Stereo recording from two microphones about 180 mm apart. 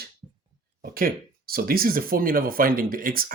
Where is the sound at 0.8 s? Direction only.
55° right (ahead or behind).